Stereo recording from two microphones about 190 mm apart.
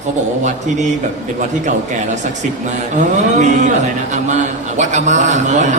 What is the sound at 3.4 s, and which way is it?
A man's voice, 40° right (ahead or behind).